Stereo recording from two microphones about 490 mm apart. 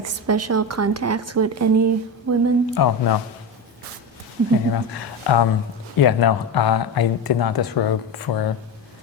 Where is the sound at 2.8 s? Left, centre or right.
Left.